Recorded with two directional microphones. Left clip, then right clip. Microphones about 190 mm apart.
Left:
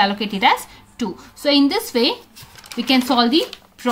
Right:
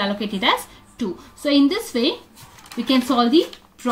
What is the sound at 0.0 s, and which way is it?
Speech, 25° left (ahead or behind).